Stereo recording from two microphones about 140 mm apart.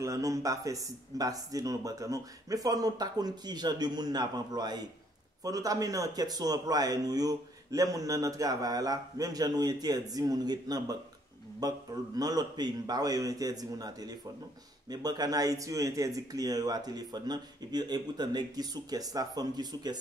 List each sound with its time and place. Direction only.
0.0 s a man's voice: 25° right (ahead or behind)